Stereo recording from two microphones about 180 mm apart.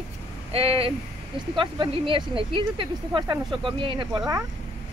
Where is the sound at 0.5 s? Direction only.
30° right (ahead or behind).